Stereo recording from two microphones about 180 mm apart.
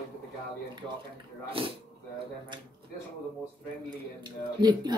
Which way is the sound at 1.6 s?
30° right (ahead or behind).